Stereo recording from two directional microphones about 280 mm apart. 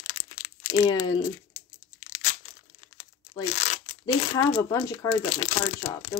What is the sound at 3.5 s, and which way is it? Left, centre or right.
Speech, left.